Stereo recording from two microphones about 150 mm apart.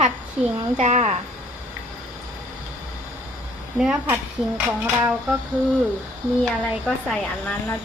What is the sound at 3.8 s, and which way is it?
Speech, 10° right (ahead or behind).